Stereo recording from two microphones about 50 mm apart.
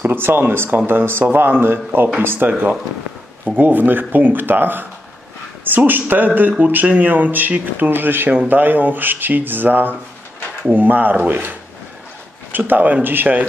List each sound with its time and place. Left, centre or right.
0.0 s speech: right
3.5 s speech: right
12.5 s speech: right